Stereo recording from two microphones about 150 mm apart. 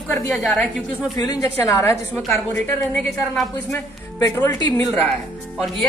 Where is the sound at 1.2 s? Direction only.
25° left (ahead or behind).